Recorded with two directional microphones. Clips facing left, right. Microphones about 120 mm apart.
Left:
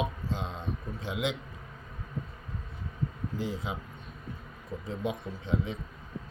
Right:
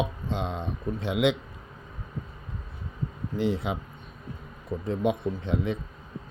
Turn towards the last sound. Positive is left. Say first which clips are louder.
# right 5 dB
turn(degrees=-60)  # may be behind; listen again after turning